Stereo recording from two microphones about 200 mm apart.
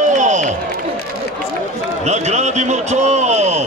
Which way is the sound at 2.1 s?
35° right (ahead or behind).